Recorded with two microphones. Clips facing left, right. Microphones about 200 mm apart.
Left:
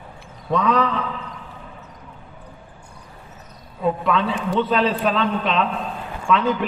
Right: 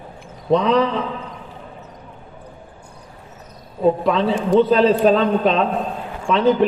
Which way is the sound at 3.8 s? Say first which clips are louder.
Right 4 dB; 35° right (ahead or behind).